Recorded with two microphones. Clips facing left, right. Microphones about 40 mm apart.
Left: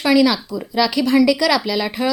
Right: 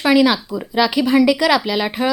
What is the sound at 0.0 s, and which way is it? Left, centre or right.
A woman's voice, centre.